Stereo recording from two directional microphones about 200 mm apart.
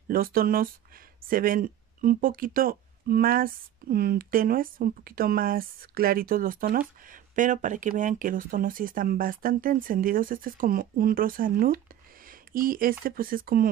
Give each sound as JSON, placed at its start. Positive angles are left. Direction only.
{"t": 0.1, "sound": "speech", "side_deg": -50}
{"t": 12.3, "sound": "a sound", "side_deg": -45}
{"t": 13.0, "sound": "speech", "side_deg": -45}